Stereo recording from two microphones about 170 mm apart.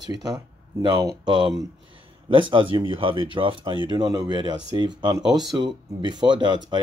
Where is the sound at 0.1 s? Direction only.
20° right (ahead or behind).